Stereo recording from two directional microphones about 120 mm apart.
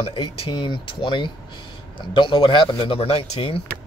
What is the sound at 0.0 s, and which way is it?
Speech, 50° left (ahead or behind).